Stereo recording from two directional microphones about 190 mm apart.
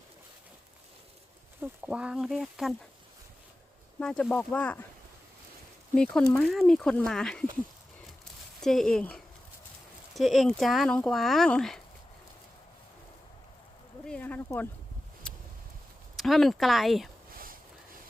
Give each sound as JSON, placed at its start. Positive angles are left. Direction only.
{"t": 1.6, "sound": "speech", "side_deg": -5}
{"t": 4.0, "sound": "speech", "side_deg": 5}
{"t": 5.9, "sound": "speech", "side_deg": 5}
{"t": 8.6, "sound": "speech", "side_deg": 0}
{"t": 14.0, "sound": "speech", "side_deg": 5}
{"t": 16.1, "sound": "speech", "side_deg": 0}
{"t": 17.3, "sound": "a sound", "side_deg": -50}